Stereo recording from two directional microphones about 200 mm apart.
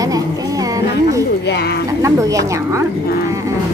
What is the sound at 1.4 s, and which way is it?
Speech, 55° left (ahead or behind).